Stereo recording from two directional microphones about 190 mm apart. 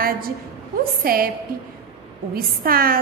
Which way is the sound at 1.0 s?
50° right (ahead or behind).